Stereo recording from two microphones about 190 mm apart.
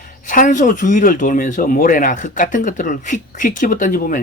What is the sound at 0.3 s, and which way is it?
A woman's voice, 40° left (ahead or behind).